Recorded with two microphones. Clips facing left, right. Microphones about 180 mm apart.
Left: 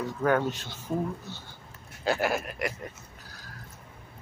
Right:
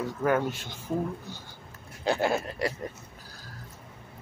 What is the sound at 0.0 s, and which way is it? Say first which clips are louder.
Speech: even; 10° right (ahead or behind).